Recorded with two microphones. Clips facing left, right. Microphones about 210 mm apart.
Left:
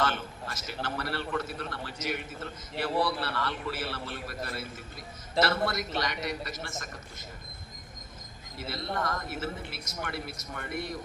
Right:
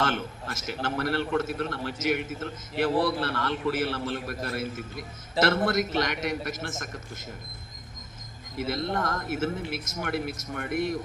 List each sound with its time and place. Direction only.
0.0 s a man's voice: 50° right (ahead or behind)
8.5 s a man's voice: 50° right (ahead or behind)